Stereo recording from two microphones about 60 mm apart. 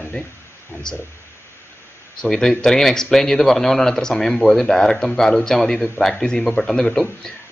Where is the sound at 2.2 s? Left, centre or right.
Centre.